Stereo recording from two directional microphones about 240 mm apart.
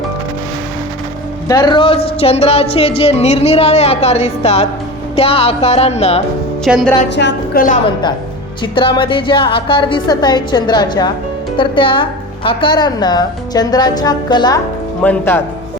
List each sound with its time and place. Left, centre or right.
1.5 s a woman's voice: centre
6.7 s music: centre
7.2 s a woman's voice: left
8.6 s a woman's voice: centre